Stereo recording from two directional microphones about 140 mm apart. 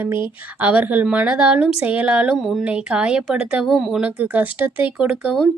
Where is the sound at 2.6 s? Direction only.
10° right (ahead or behind).